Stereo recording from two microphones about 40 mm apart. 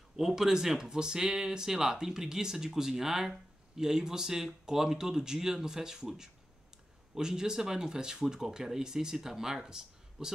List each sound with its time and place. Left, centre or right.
0.1 s speech: centre